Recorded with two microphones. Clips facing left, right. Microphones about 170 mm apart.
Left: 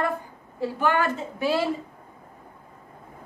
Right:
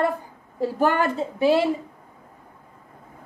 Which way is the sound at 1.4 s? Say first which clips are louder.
Right 5 dB; 20° right (ahead or behind).